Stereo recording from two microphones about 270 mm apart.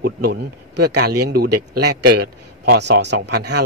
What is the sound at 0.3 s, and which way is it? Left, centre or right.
Speech, right.